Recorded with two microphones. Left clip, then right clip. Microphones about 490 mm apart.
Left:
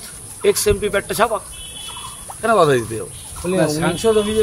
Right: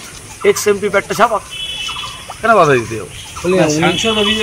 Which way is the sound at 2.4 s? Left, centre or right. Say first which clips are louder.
Right 4 dB; left.